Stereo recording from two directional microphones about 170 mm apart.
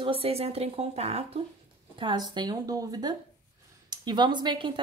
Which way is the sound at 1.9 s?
25° right (ahead or behind).